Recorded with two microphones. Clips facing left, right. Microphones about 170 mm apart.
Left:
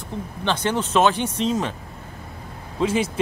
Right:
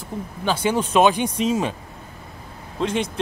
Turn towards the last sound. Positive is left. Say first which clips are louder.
# left 2 dB
turn(degrees=5)  # may be behind; listen again after turning